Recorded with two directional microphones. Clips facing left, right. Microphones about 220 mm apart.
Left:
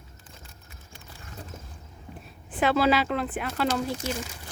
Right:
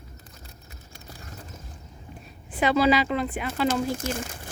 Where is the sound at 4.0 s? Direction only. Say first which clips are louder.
Right 1 dB; 50° right (ahead or behind).